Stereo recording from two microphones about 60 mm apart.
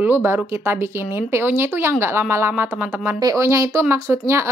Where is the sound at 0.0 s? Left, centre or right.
Right.